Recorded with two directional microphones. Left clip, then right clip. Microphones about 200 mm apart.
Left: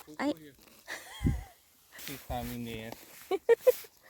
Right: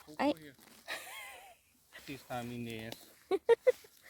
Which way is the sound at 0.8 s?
5° right (ahead or behind).